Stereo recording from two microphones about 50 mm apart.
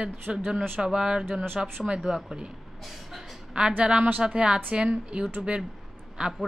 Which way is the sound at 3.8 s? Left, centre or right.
Centre.